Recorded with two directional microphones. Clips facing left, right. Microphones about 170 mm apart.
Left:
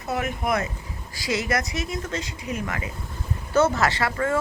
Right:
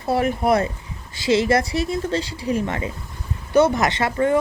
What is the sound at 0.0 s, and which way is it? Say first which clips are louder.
A woman's voice: right 7 dB; 35° right (ahead or behind).